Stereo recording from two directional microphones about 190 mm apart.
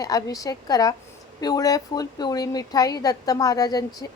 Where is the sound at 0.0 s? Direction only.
20° left (ahead or behind).